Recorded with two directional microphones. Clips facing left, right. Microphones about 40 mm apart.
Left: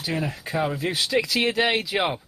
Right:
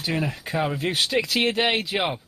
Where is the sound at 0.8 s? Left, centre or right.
Right.